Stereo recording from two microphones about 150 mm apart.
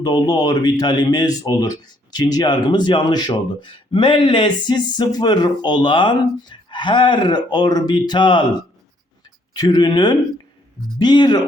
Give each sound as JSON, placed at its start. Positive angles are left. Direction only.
{"t": 0.0, "sound": "speech", "side_deg": 25}
{"t": 9.6, "sound": "speech", "side_deg": 25}